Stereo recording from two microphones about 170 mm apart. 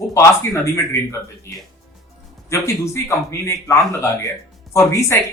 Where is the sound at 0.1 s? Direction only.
20° left (ahead or behind).